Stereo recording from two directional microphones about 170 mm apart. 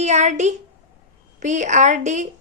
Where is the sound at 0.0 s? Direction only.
45° right (ahead or behind).